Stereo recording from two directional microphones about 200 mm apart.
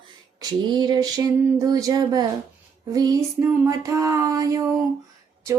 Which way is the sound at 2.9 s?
20° right (ahead or behind).